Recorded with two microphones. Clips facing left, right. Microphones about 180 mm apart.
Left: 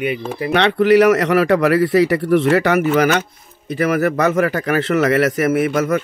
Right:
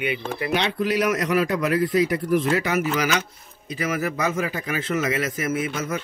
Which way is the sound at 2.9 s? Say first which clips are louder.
Left 8 dB; 55° left (ahead or behind).